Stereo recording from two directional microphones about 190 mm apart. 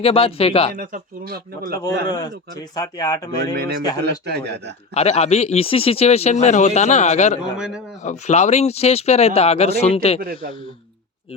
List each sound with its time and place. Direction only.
0.0 s a man's voice: 30° left (ahead or behind)
0.7 s speech: 50° right (ahead or behind)
2.0 s speech: 20° left (ahead or behind)
3.5 s speech: 50° right (ahead or behind)
4.9 s a man's voice: 35° left (ahead or behind)
10.2 s speech: 50° right (ahead or behind)